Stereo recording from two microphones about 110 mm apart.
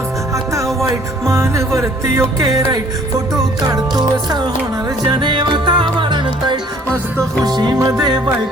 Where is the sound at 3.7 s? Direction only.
35° right (ahead or behind).